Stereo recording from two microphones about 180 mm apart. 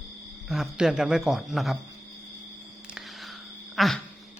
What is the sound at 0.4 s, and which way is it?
Speech, centre (ahead or behind).